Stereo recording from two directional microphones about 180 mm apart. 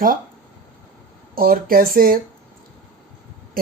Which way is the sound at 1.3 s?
55° right (ahead or behind).